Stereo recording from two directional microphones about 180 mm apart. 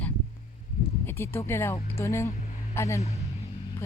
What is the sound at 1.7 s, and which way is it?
Speech, 35° left (ahead or behind).